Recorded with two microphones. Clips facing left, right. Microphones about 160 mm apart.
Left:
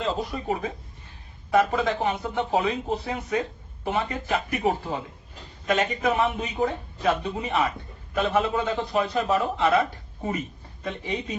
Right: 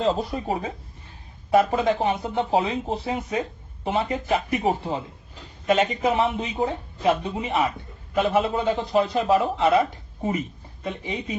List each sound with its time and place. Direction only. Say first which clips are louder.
0.0 s speech: right 4 dB; 30° right (ahead or behind)
10.8 s speech: even; 15° right (ahead or behind)